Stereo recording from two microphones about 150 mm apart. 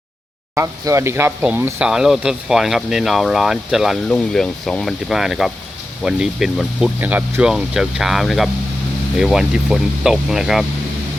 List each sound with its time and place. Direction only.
0.5 s speech: 20° right (ahead or behind); by 10.7 s centre (ahead or behind)